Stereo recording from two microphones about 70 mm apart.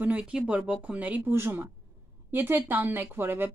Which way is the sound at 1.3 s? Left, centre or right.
Right.